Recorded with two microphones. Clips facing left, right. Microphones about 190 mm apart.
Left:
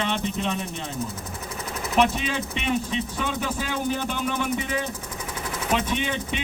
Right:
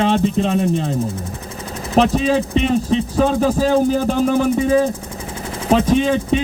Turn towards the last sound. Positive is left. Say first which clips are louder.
# right 12 dB
turn(degrees=-40)  # may be behind; listen again after turning